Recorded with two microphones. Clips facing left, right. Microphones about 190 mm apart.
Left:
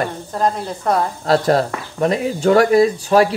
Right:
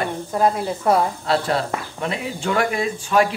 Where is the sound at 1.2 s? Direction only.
40° left (ahead or behind).